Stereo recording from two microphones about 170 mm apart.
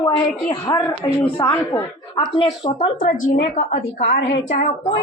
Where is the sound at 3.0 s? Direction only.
50° left (ahead or behind).